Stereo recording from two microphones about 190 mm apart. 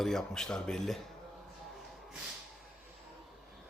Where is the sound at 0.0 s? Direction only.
Centre (ahead or behind).